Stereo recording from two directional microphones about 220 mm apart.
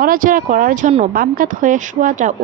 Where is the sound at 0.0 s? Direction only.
40° right (ahead or behind).